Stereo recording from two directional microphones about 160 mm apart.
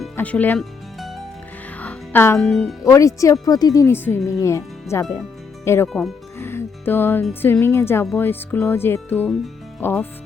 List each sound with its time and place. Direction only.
0.2 s speech: 10° left (ahead or behind)
0.6 s music: centre (ahead or behind)
1.8 s music: 10° left (ahead or behind)
2.5 s speech: 5° left (ahead or behind)
2.8 s speech: 20° left (ahead or behind)
5.9 s speech: centre (ahead or behind)
6.4 s speech: 15° left (ahead or behind)